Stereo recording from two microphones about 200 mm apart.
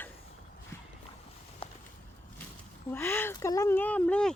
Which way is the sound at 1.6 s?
25° left (ahead or behind).